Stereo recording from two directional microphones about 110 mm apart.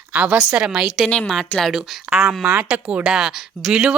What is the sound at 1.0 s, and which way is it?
A woman's voice, 10° left (ahead or behind).